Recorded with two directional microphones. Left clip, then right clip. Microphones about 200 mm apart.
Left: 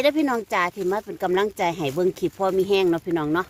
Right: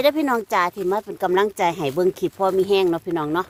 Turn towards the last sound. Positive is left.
turn(degrees=-15)  # may be behind; listen again after turning